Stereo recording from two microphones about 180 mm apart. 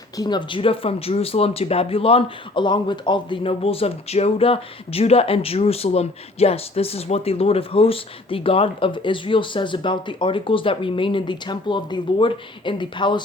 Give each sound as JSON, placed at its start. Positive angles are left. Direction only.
{"t": 0.2, "sound": "speech", "side_deg": 25}